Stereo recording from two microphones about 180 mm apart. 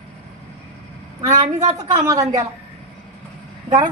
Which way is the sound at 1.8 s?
20° right (ahead or behind).